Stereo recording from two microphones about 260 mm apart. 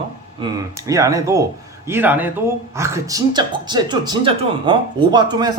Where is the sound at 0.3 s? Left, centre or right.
Centre.